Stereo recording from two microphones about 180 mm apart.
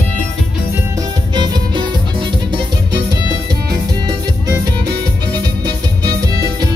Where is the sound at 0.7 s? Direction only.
20° right (ahead or behind).